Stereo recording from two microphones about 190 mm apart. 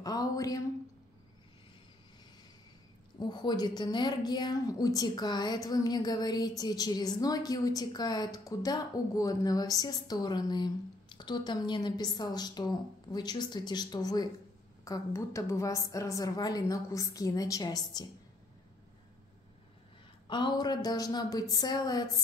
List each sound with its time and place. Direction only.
0.0 s speech: 20° left (ahead or behind)
3.2 s a woman's voice: 20° left (ahead or behind)
20.2 s a woman's voice: 25° left (ahead or behind)